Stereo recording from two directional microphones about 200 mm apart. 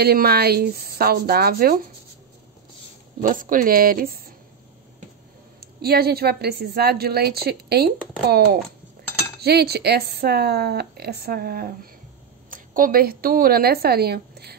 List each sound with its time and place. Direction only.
0.0 s speech: 50° right (ahead or behind)
3.2 s speech: 40° right (ahead or behind)
5.6 s speech: 50° right (ahead or behind)
9.4 s a woman's voice: 55° right (ahead or behind)